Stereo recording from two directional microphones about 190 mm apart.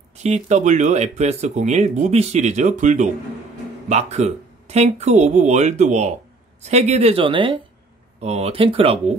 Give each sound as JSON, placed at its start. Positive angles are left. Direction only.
{"t": 0.2, "sound": "speech", "side_deg": -40}